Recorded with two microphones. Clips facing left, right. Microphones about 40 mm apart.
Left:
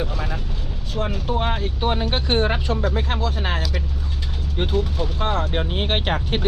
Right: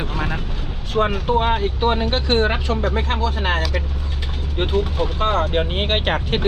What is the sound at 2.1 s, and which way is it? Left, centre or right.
Speech, right.